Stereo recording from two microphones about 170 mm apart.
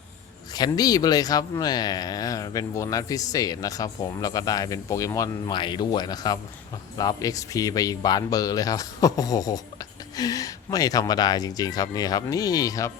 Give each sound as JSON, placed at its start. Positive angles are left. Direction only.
{"t": 0.5, "sound": "speech", "side_deg": 25}